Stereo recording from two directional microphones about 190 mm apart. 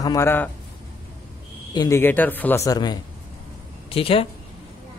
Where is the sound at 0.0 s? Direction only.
15° left (ahead or behind).